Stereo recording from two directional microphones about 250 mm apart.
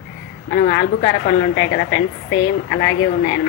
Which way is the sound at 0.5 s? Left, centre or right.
Left.